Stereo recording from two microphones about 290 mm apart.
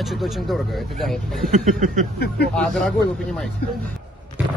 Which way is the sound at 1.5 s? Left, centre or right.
Right.